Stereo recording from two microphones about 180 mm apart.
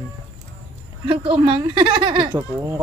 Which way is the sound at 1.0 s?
30° right (ahead or behind).